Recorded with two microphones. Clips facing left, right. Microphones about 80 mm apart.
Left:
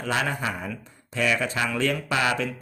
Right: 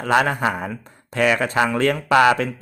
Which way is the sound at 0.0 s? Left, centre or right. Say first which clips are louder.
Right 8 dB; right.